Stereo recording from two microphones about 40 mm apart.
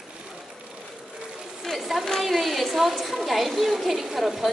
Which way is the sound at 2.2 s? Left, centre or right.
Centre.